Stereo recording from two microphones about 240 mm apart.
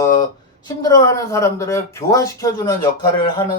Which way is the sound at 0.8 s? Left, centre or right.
Centre.